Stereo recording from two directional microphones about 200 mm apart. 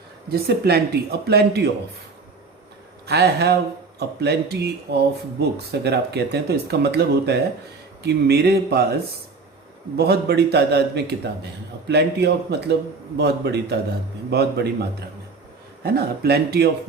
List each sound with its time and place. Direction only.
0.3 s a man's voice: 50° right (ahead or behind)
3.1 s a man's voice: 55° right (ahead or behind)
10.0 s speech: 55° right (ahead or behind)
15.8 s a man's voice: 50° right (ahead or behind)